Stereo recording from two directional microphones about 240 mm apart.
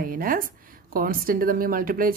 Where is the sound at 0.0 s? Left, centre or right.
Right.